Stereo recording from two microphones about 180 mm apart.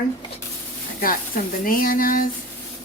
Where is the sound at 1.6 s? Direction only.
50° left (ahead or behind).